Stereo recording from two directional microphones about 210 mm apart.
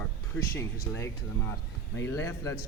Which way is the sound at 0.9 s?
10° left (ahead or behind).